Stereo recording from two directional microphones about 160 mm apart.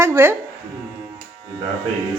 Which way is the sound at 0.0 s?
15° right (ahead or behind).